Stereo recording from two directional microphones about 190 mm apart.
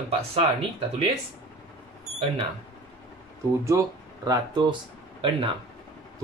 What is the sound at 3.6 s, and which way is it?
Speech, 20° right (ahead or behind).